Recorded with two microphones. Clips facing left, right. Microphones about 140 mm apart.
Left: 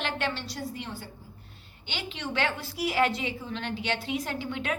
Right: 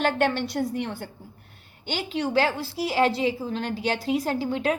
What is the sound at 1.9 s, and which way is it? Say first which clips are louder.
A woman's voice: right 8 dB; 40° right (ahead or behind).